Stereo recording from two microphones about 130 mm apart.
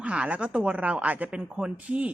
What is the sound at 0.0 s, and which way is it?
A woman's voice, 10° right (ahead or behind).